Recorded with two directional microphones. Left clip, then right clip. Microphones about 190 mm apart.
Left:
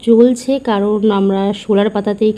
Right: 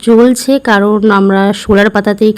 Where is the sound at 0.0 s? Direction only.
35° right (ahead or behind).